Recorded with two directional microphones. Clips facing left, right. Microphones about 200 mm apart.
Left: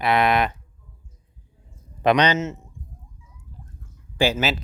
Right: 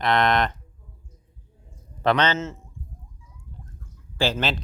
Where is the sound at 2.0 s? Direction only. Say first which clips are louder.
Left 3 dB; 15° left (ahead or behind).